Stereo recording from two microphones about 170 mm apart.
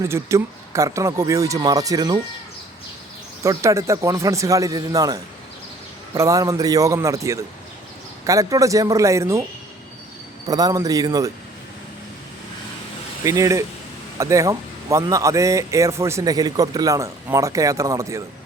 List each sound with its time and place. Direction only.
0.0 s speech: 15° right (ahead or behind)
3.4 s speech: 20° right (ahead or behind)
10.5 s speech: 20° right (ahead or behind)
13.2 s speech: 20° right (ahead or behind)